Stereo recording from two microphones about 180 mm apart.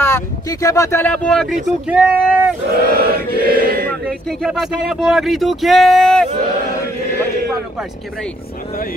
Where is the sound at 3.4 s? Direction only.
55° right (ahead or behind).